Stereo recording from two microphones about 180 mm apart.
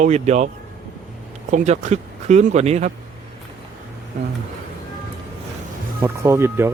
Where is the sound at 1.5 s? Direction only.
40° right (ahead or behind).